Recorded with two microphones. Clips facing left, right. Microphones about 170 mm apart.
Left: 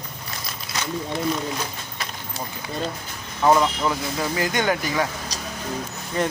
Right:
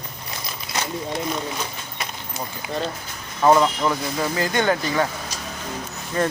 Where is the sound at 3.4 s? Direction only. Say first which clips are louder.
Right 2 dB; 5° right (ahead or behind).